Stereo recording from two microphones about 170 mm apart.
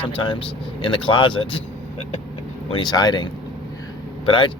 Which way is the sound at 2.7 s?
25° left (ahead or behind).